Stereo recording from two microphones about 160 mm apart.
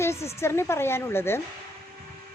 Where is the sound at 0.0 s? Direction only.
15° left (ahead or behind).